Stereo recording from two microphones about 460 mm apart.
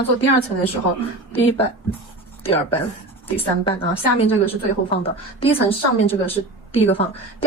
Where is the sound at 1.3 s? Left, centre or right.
Centre.